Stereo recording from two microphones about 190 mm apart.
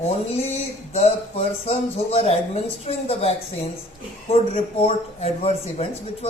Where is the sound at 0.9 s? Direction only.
35° left (ahead or behind).